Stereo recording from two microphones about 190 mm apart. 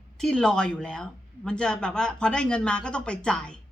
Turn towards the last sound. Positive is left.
turn(degrees=5)  # may be behind; listen again after turning